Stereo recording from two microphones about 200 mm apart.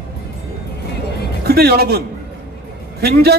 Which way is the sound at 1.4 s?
50° right (ahead or behind).